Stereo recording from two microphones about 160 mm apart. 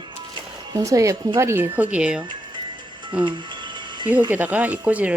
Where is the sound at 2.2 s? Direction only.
30° right (ahead or behind).